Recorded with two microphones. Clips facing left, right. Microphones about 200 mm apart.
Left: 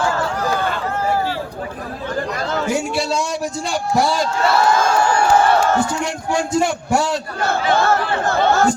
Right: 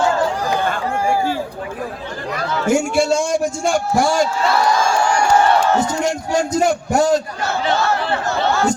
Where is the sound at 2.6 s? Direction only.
45° right (ahead or behind).